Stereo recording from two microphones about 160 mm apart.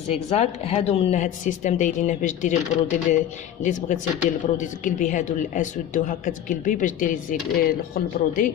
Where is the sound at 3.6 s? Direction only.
50° left (ahead or behind).